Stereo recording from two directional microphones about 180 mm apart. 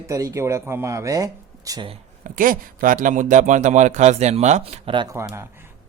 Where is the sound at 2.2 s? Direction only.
50° right (ahead or behind).